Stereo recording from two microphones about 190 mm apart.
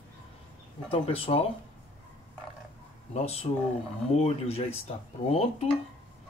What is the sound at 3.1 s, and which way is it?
Speech, 30° left (ahead or behind).